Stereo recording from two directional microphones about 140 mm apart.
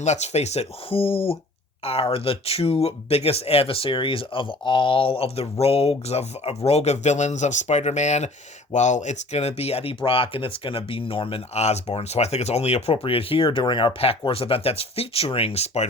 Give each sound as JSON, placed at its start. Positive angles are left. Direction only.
{"t": 0.0, "sound": "speech", "side_deg": 55}